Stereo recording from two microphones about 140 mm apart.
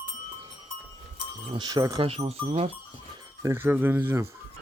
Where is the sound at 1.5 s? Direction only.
30° right (ahead or behind).